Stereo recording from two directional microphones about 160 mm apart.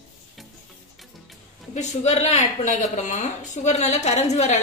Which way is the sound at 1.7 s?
45° left (ahead or behind).